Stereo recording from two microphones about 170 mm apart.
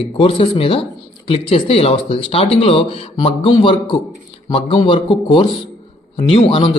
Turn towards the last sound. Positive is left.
turn(degrees=35)  # may be behind; listen again after turning